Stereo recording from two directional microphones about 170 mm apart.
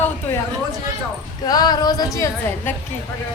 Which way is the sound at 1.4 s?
25° left (ahead or behind).